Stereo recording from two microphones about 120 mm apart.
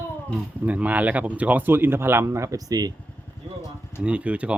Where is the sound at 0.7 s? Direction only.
10° right (ahead or behind); by 2.9 s 30° right (ahead or behind).